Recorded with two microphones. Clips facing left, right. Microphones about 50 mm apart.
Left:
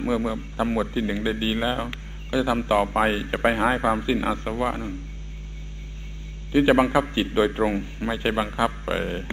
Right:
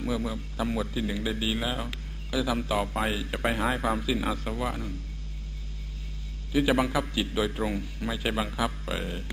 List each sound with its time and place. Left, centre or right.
0.0 s a man's voice: left
6.5 s a man's voice: left